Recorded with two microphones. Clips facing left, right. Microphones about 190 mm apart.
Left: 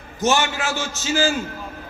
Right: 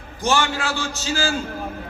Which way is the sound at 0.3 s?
15° left (ahead or behind).